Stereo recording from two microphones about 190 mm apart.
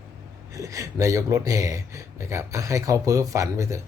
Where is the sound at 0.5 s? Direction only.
15° right (ahead or behind).